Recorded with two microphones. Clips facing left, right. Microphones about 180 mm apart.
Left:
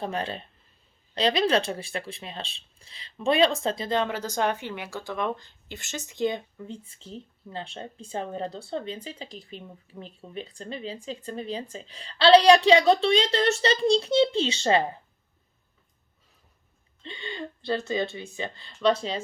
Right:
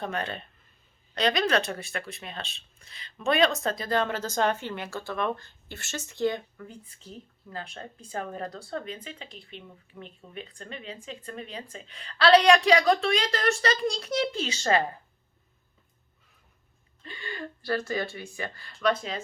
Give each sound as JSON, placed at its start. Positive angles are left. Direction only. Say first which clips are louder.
{"t": 0.0, "sound": "speech", "louder": "left 2 dB", "side_deg": 30}
{"t": 17.0, "sound": "speech", "louder": "left 2 dB", "side_deg": 25}